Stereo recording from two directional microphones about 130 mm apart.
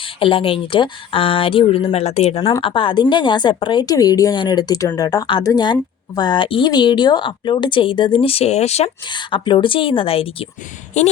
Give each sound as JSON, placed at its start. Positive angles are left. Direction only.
{"t": 0.2, "sound": "speech", "side_deg": 40}
{"t": 2.6, "sound": "speech", "side_deg": 40}
{"t": 9.0, "sound": "speech", "side_deg": 35}
{"t": 11.0, "sound": "speech", "side_deg": 65}